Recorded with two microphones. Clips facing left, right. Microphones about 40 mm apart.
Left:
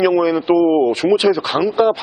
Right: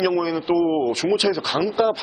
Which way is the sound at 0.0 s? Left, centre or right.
Left.